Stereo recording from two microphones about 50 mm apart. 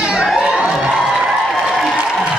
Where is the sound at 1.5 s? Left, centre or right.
Centre.